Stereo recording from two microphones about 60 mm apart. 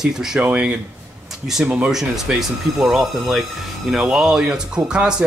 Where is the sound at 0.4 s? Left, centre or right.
Right.